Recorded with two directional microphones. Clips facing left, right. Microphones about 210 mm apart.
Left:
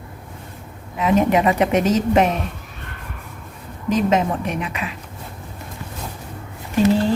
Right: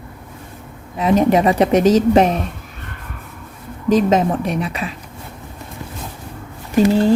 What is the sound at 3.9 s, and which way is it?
Speech, 35° right (ahead or behind).